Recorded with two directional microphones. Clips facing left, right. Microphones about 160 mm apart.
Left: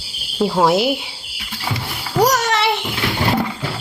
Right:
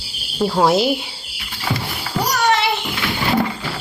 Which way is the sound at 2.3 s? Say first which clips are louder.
Even; 85° left.